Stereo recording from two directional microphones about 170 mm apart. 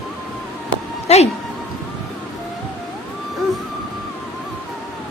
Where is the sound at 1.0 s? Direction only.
40° left (ahead or behind).